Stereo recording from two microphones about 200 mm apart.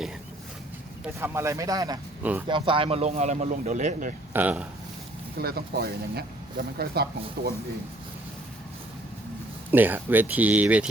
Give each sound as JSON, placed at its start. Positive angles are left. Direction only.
{"t": 1.0, "sound": "speech", "side_deg": -10}
{"t": 4.4, "sound": "speech", "side_deg": -5}
{"t": 5.4, "sound": "speech", "side_deg": -50}
{"t": 9.7, "sound": "speech", "side_deg": -10}